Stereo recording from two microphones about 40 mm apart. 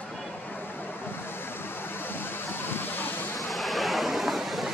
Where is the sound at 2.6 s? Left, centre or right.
Left.